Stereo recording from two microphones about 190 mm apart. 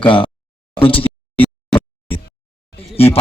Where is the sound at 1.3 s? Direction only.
5° left (ahead or behind).